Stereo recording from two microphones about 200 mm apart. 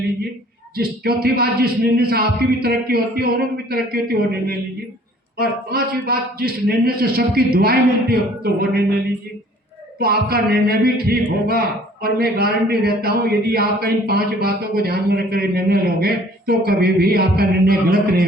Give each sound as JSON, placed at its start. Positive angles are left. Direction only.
{"t": 0.8, "sound": "a man's voice", "side_deg": -50}
{"t": 10.0, "sound": "a man's voice", "side_deg": -50}